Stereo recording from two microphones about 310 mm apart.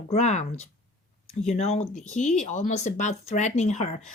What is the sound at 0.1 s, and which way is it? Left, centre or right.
Speech, left.